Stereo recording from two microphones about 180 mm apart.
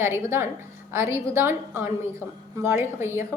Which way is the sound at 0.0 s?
15° right (ahead or behind).